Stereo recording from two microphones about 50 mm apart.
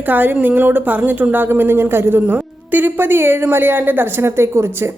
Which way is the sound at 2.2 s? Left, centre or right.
Right.